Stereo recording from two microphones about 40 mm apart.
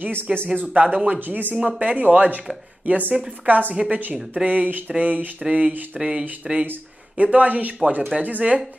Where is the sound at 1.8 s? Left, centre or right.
Right.